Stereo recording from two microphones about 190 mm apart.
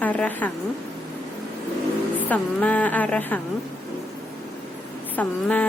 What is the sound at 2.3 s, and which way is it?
A woman's voice, 10° left (ahead or behind).